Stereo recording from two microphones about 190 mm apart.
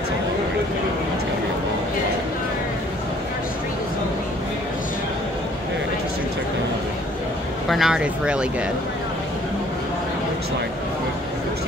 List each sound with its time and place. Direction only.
7.6 s speech: centre (ahead or behind)